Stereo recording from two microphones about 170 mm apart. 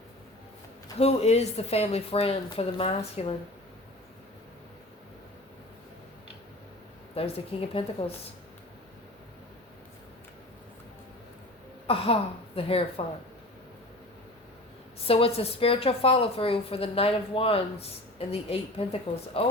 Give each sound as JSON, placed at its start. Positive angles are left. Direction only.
{"t": 0.9, "sound": "a woman's voice", "side_deg": 40}
{"t": 7.2, "sound": "a woman's voice", "side_deg": 35}
{"t": 11.9, "sound": "a woman's voice", "side_deg": 35}
{"t": 15.0, "sound": "a woman's voice", "side_deg": 35}